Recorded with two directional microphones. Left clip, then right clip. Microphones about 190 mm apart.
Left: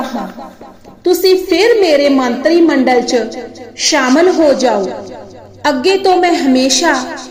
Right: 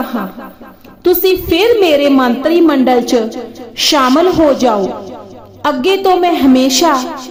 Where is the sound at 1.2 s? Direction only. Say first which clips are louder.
Left 4 dB; 25° right (ahead or behind).